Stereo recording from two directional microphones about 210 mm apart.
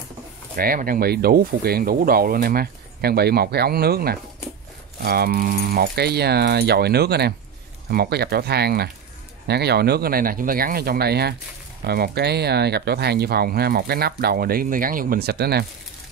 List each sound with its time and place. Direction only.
0.6 s speech: 45° right (ahead or behind)